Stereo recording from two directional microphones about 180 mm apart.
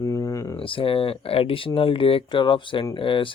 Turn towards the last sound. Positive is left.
turn(degrees=30)  # may be behind; listen again after turning